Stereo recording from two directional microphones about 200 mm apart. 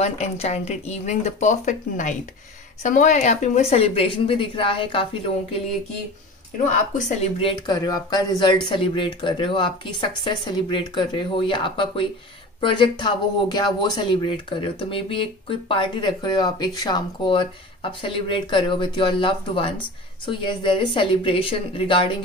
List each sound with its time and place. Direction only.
0.0 s speech: 30° left (ahead or behind)
7.0 s speech: 35° left (ahead or behind)